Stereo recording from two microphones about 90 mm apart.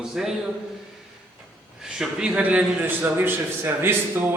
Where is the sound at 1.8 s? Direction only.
10° right (ahead or behind); by 4.3 s 25° right (ahead or behind).